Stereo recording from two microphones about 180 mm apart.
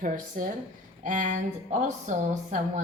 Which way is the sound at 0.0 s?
50° right (ahead or behind).